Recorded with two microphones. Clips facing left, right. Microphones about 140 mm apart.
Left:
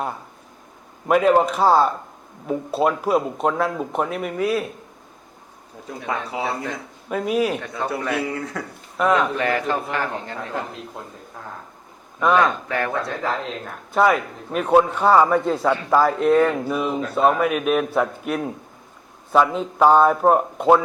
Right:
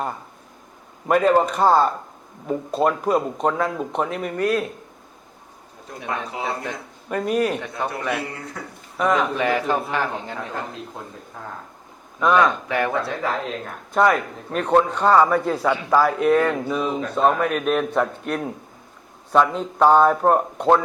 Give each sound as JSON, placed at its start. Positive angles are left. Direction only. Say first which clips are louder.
{"t": 1.0, "sound": "a man's voice", "louder": "left 1 dB", "side_deg": 5}
{"t": 6.6, "sound": "a man's voice", "louder": "left 1 dB", "side_deg": 0}
{"t": 8.6, "sound": "speech", "louder": "left 4 dB", "side_deg": 90}
{"t": 9.0, "sound": "a man's voice", "louder": "left 1 dB", "side_deg": 0}
{"t": 9.4, "sound": "a man's voice", "louder": "right 1 dB", "side_deg": -15}
{"t": 10.0, "sound": "a man's voice", "louder": "right 1 dB", "side_deg": -5}
{"t": 12.2, "sound": "a man's voice", "louder": "even", "side_deg": 5}
{"t": 12.6, "sound": "a man's voice", "louder": "right 2 dB", "side_deg": -15}
{"t": 13.0, "sound": "a man's voice", "louder": "even", "side_deg": 0}